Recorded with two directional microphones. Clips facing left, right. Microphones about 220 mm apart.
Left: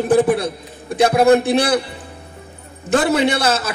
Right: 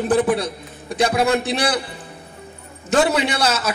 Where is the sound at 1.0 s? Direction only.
55° left (ahead or behind).